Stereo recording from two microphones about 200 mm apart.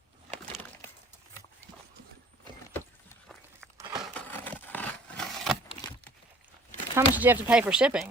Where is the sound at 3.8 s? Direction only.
15° right (ahead or behind).